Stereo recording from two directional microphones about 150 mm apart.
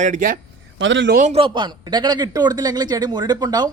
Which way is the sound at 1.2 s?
35° right (ahead or behind).